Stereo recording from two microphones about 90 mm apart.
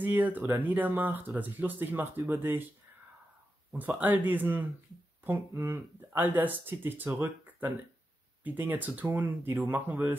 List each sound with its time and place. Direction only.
0.0 s speech: 20° right (ahead or behind)
3.7 s speech: 20° right (ahead or behind)
5.2 s speech: 30° right (ahead or behind)
5.9 s speech: 20° right (ahead or behind)
8.5 s speech: 20° right (ahead or behind)